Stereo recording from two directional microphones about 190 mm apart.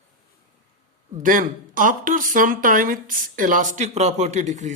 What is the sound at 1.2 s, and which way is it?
A man's voice, 45° right (ahead or behind).